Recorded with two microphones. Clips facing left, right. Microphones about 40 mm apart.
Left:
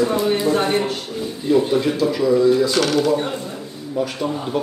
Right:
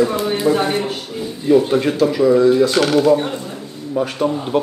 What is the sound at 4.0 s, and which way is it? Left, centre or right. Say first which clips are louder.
Speech: right 4 dB; right.